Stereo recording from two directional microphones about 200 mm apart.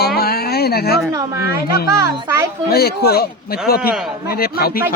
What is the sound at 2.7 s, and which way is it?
Speech, 50° left (ahead or behind).